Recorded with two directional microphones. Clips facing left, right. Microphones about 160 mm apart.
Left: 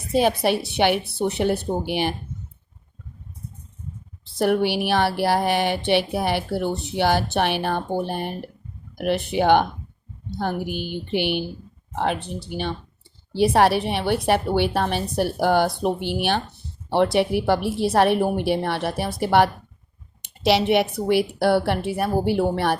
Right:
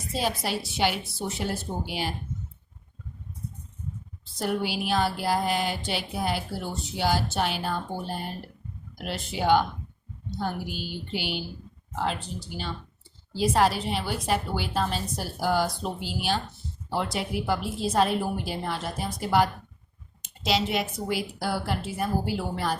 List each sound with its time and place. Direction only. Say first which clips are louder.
0.1 s a woman's voice: left 9 dB; 65° left (ahead or behind)
4.3 s a woman's voice: left 8 dB; 65° left (ahead or behind)